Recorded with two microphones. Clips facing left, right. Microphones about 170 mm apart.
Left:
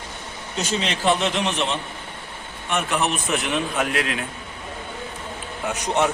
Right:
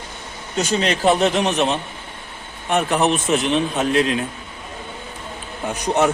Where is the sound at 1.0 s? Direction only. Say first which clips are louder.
Right 4 dB; 40° right (ahead or behind).